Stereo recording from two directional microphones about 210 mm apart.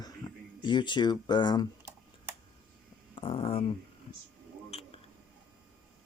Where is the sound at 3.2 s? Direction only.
25° left (ahead or behind).